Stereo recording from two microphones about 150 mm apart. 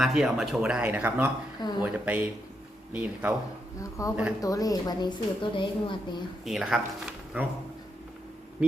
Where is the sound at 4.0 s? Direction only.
20° left (ahead or behind).